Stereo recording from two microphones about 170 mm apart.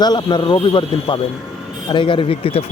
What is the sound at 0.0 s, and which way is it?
Speech, 25° left (ahead or behind).